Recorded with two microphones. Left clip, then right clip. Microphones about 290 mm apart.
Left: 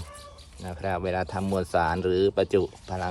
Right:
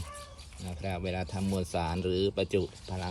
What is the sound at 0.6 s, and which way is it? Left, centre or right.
Speech, left.